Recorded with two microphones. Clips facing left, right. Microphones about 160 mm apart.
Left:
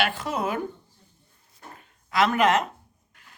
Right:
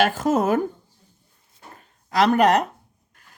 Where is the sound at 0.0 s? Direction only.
45° right (ahead or behind).